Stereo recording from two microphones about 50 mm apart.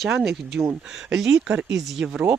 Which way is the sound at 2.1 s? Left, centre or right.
Centre.